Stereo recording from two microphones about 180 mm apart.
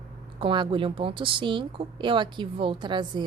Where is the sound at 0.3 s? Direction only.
25° right (ahead or behind).